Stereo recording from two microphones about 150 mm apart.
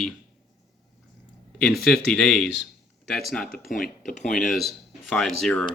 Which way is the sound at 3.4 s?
80° left.